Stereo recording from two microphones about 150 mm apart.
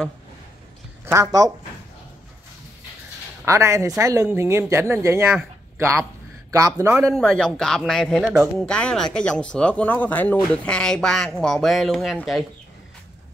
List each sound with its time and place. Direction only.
3.4 s a man's voice: 20° right (ahead or behind)
7.2 s speech: centre (ahead or behind)
8.2 s speech: 10° right (ahead or behind)
8.5 s speech: 5° left (ahead or behind)